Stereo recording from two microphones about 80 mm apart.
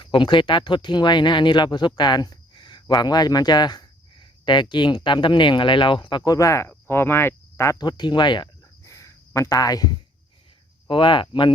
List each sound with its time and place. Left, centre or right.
0.0 s speech: left
6.2 s speech: left
6.7 s speech: left
7.8 s speech: left
8.8 s a sound: left
10.8 s speech: left